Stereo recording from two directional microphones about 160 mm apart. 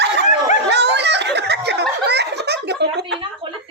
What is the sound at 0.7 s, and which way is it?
Snicker, 90° right.